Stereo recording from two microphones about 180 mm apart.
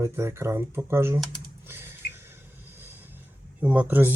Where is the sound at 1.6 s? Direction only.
15° right (ahead or behind).